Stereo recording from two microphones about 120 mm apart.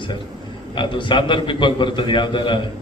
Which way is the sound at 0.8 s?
40° left (ahead or behind).